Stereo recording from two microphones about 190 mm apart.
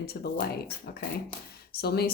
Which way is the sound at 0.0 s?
55° left (ahead or behind).